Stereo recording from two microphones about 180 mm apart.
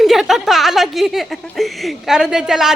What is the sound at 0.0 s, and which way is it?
Speech, centre (ahead or behind).